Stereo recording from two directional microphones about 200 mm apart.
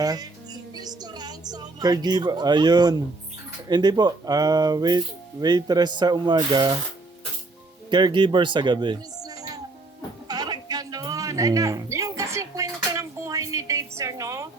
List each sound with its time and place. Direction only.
0.0 s music: 20° right (ahead or behind)
3.7 s speech: 20° right (ahead or behind)
7.9 s speech: 25° right (ahead or behind)
10.2 s music: 20° right (ahead or behind)